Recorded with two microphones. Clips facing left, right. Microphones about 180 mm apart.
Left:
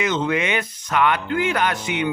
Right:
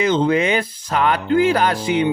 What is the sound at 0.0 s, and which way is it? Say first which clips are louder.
Speech: right 5 dB; 30° right (ahead or behind).